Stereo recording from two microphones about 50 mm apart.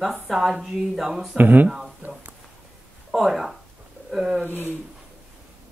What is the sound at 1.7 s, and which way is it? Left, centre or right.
Speech, centre.